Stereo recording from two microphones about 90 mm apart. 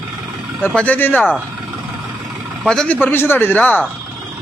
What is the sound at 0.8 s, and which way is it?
Speech, 20° left (ahead or behind).